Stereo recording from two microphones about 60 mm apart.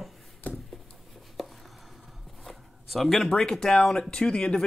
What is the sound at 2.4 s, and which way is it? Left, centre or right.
Speech, centre.